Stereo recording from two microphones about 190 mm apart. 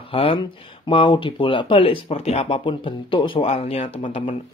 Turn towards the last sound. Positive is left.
turn(degrees=30)  # may be behind; listen again after turning